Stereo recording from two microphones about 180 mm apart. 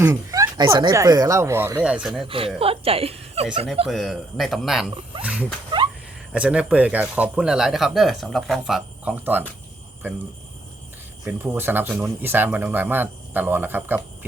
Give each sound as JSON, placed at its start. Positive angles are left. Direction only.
{"t": 0.0, "sound": "speech", "side_deg": -15}
{"t": 2.2, "sound": "speech", "side_deg": -30}
{"t": 3.8, "sound": "speech", "side_deg": 0}
{"t": 11.3, "sound": "speech", "side_deg": -10}